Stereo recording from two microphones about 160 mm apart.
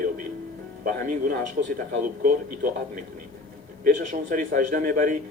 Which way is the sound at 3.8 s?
50° right (ahead or behind).